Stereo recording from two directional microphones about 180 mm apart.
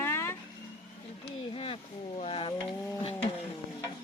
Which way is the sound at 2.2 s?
30° left (ahead or behind).